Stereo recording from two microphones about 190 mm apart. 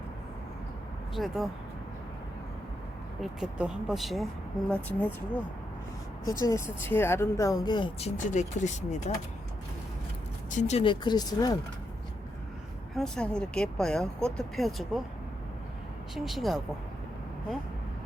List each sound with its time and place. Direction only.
1.1 s speech: centre (ahead or behind)
3.2 s speech: 5° right (ahead or behind)
6.4 s speech: 15° left (ahead or behind); by 9.1 s 40° left (ahead or behind)
10.5 s speech: 40° left (ahead or behind); by 11.5 s 20° left (ahead or behind)
13.0 s speech: 5° left (ahead or behind)
16.1 s speech: centre (ahead or behind)